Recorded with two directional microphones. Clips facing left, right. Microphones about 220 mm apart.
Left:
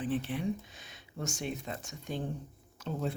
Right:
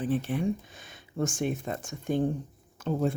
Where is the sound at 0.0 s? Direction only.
45° right (ahead or behind).